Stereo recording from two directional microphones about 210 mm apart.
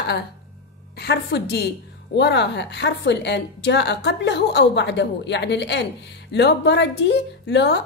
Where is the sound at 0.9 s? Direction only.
50° left (ahead or behind).